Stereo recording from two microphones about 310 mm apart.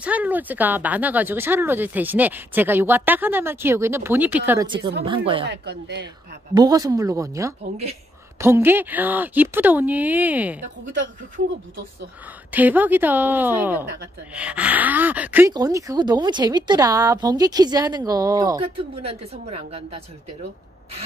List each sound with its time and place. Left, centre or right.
0.0 s speech: centre
5.4 s speech: right
6.5 s speech: centre
8.4 s a woman's voice: centre
10.9 s speech: right
12.4 s a woman's voice: centre